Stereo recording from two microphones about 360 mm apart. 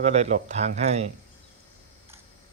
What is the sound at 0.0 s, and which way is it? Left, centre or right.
Speech, centre.